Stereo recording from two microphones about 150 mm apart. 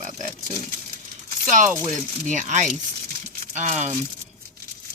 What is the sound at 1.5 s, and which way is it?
Speech, 55° right (ahead or behind).